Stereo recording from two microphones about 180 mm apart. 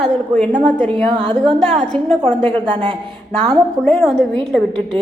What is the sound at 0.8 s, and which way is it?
Speech, 30° right (ahead or behind).